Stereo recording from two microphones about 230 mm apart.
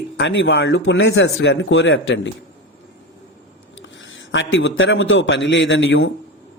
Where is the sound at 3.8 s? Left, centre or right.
Left.